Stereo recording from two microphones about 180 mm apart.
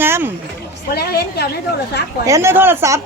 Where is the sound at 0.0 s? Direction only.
10° right (ahead or behind).